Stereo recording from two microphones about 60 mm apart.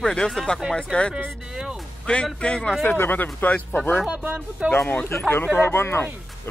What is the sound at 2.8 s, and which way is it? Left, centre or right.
Speech, left.